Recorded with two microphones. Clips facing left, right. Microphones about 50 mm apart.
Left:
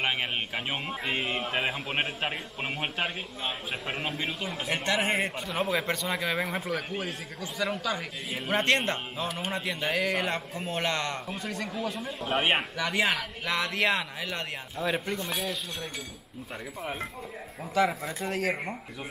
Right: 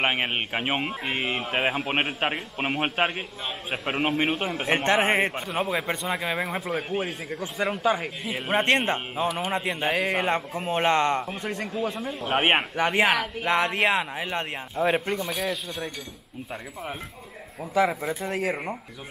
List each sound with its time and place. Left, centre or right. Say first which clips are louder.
0.0 s a man's voice: right 4 dB; right
4.2 s a man's voice: right 7 dB; right
5.7 s speech: right 2 dB; centre
6.9 s a man's voice: right 6 dB; right
15.1 s speech: right 4 dB; centre
17.7 s speech: right 3 dB; centre